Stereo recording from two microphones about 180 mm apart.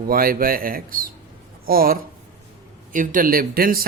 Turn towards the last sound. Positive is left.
turn(degrees=-55)  # may be behind; listen again after turning